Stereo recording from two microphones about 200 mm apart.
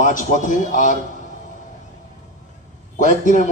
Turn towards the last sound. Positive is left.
turn(degrees=40)  # may be behind; listen again after turning